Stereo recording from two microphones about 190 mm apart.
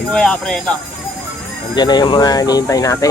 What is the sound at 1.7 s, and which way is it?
Speech, 20° left (ahead or behind).